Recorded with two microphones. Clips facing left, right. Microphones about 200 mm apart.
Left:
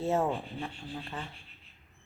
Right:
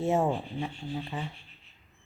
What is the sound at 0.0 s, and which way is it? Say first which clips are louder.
Speech: right 2 dB; 15° right (ahead or behind).